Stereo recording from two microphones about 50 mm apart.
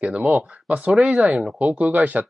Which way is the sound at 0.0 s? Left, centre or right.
Right.